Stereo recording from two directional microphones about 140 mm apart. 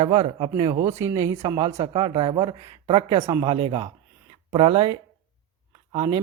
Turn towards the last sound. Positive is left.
turn(degrees=-35)  # may be behind; listen again after turning